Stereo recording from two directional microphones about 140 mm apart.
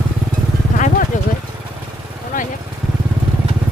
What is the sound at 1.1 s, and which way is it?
Vehicle, 65° left (ahead or behind).